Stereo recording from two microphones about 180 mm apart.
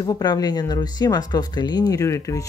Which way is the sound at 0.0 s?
20° left (ahead or behind).